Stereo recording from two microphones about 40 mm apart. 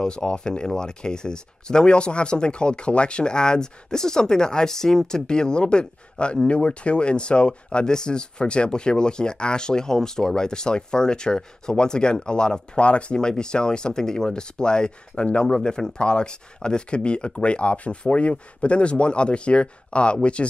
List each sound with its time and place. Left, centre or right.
0.0 s speech: centre
12.8 s speech: left